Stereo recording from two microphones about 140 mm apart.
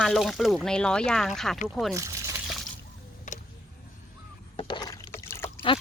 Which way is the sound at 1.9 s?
20° right (ahead or behind).